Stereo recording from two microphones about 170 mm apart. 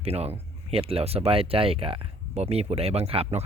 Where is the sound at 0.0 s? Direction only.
35° right (ahead or behind).